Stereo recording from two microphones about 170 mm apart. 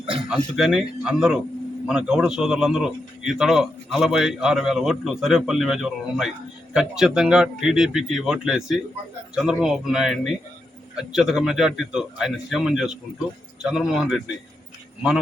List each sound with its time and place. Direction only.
0.0 s speech: 30° right (ahead or behind)
0.3 s a man's voice: 5° right (ahead or behind)